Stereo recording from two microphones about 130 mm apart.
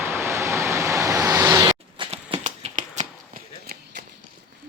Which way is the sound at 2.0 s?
40° right (ahead or behind).